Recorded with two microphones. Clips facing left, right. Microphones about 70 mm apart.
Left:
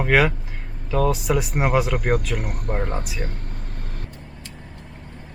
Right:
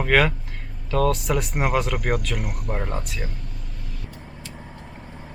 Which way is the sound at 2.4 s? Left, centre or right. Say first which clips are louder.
Left 1 dB; left.